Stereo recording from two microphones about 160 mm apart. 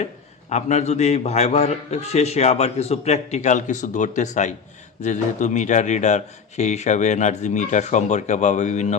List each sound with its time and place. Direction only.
0.5 s a man's voice: 45° left (ahead or behind)